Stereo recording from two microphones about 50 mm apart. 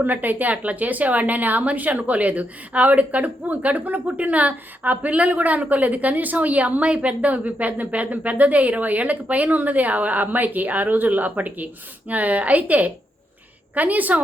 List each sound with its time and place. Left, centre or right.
0.0 s speech: right